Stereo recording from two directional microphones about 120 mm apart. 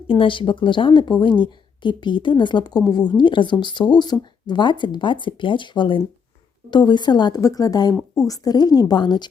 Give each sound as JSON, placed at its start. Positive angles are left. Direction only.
{"t": 0.1, "sound": "speech", "side_deg": 45}
{"t": 7.9, "sound": "speech", "side_deg": 0}
{"t": 8.3, "sound": "speech", "side_deg": 35}